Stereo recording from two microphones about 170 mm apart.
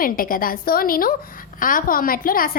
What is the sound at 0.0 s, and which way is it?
A woman's voice, 55° left (ahead or behind).